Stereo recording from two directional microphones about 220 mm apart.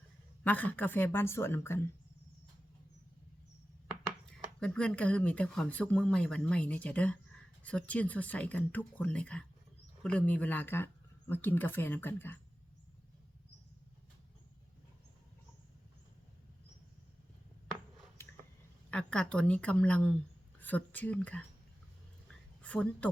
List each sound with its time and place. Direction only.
0.4 s speech: 5° left (ahead or behind)
4.6 s speech: 5° left (ahead or behind)
18.9 s speech: 5° left (ahead or behind)
22.3 s a sound: 5° left (ahead or behind)